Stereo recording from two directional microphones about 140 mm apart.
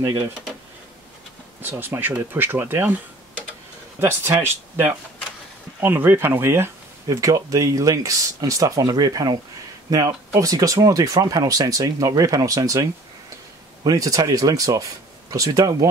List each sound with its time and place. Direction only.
1.6 s speech: 15° right (ahead or behind)
4.0 s speech: 20° right (ahead or behind)
13.8 s speech: 25° right (ahead or behind)